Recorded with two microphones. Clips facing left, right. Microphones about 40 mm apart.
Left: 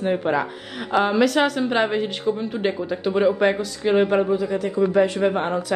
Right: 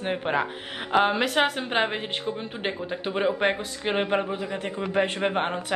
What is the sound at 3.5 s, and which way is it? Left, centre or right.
Speech, right.